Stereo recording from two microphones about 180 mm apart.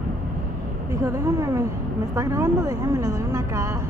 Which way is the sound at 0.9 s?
15° right (ahead or behind).